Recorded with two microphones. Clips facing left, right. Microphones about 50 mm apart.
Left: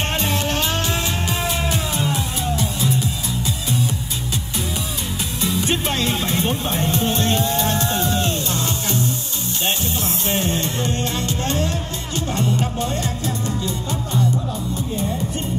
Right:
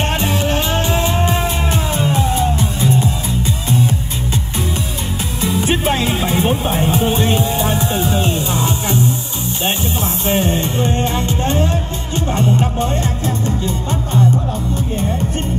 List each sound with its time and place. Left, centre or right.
0.0 s music: centre; by 3.1 s right
5.4 s music: centre
10.2 s music: right